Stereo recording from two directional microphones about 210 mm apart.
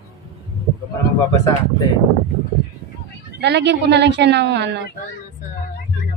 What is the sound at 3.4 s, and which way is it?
Speech, 55° right (ahead or behind).